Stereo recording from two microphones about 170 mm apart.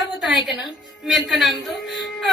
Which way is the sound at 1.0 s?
Centre (ahead or behind).